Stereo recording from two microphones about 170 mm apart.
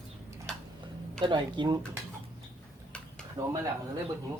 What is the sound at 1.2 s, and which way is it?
Speech, 25° right (ahead or behind).